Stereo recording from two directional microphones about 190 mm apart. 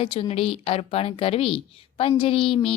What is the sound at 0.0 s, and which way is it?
A woman's voice, 30° left (ahead or behind).